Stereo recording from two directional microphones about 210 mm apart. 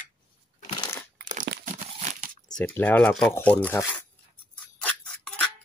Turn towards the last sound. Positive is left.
turn(degrees=5)  # may be behind; listen again after turning